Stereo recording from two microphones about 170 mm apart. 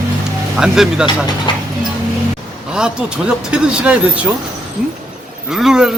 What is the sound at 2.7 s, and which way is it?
Speech, 5° right (ahead or behind).